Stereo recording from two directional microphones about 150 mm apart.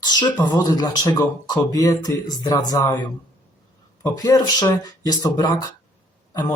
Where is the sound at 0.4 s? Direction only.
25° left (ahead or behind).